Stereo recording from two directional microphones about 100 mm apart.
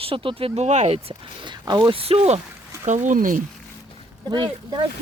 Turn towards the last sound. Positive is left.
turn(degrees=-45)  # may be behind; listen again after turning